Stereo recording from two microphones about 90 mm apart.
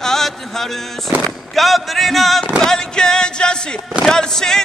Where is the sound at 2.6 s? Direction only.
5° left (ahead or behind).